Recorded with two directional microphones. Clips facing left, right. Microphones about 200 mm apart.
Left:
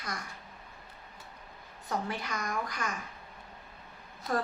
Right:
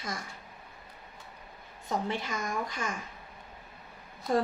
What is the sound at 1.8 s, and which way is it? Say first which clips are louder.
A woman's voice: right 2 dB; 25° right (ahead or behind).